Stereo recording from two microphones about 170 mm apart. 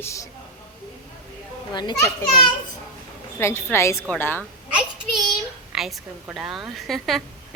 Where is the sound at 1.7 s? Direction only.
25° left (ahead or behind).